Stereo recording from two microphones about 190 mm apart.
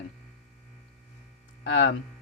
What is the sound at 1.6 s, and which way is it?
Speech, 70° left (ahead or behind).